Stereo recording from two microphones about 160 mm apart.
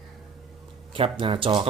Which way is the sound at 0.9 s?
35° right (ahead or behind).